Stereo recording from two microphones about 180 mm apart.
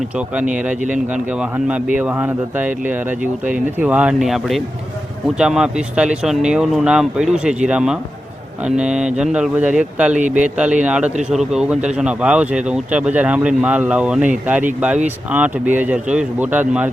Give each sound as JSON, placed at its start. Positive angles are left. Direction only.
{"t": 0.3, "sound": "speech", "side_deg": -5}